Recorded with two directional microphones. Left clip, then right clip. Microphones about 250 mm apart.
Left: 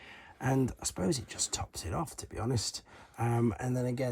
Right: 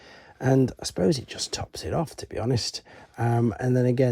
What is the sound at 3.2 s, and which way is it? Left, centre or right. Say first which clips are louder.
Speech: right 7 dB; right.